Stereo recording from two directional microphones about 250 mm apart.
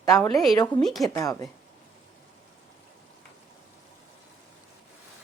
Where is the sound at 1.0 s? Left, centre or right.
Centre.